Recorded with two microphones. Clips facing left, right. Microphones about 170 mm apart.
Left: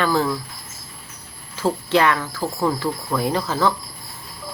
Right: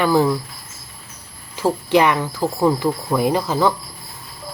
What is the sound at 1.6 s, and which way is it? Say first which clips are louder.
Speech: right 3 dB; 15° right (ahead or behind).